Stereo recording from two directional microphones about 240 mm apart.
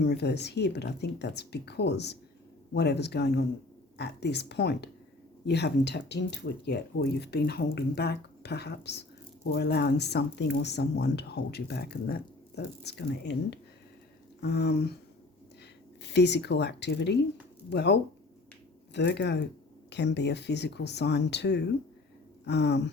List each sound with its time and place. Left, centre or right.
0.0 s speech: left
16.0 s speech: left